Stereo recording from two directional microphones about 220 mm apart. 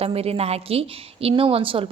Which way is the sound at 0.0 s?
25° right (ahead or behind).